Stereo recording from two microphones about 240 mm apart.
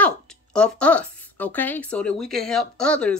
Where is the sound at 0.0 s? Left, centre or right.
Centre.